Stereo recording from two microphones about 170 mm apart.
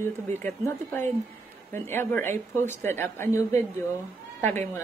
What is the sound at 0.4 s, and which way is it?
A woman's voice, 10° left (ahead or behind).